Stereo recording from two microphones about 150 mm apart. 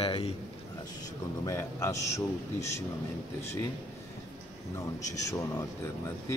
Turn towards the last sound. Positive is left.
turn(degrees=20)  # may be behind; listen again after turning